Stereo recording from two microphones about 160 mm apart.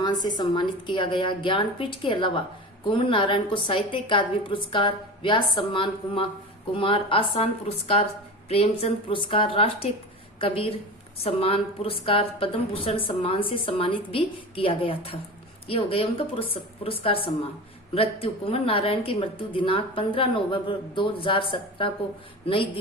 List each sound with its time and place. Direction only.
0.0 s a woman's voice: 25° left (ahead or behind)
8.4 s a woman's voice: 40° left (ahead or behind)